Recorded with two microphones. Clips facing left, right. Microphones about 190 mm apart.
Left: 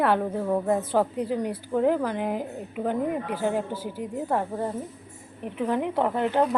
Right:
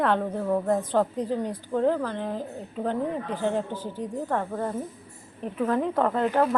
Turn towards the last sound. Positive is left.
turn(degrees=15)  # may be behind; listen again after turning